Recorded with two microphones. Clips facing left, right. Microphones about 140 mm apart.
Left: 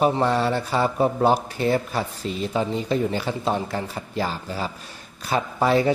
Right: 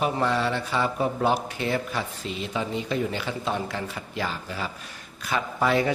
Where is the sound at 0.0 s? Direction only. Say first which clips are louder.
Left 4 dB; 40° left (ahead or behind).